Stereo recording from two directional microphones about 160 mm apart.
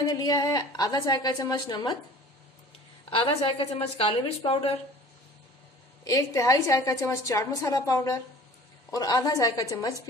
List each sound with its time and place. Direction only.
0.0 s a woman's voice: 25° left (ahead or behind)
3.1 s a woman's voice: 35° left (ahead or behind)
6.0 s a woman's voice: 20° left (ahead or behind)